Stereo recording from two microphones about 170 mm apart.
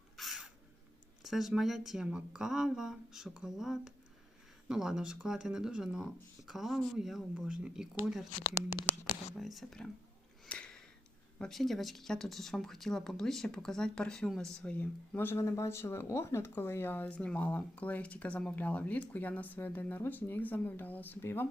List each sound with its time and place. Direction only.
0.2 s crow: centre (ahead or behind)
1.2 s speech: centre (ahead or behind)
8.4 s speech: 25° left (ahead or behind)
9.4 s speech: centre (ahead or behind)
10.4 s sniff: 5° left (ahead or behind)
11.3 s speech: centre (ahead or behind)